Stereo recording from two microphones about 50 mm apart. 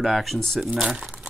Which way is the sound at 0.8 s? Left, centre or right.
Centre.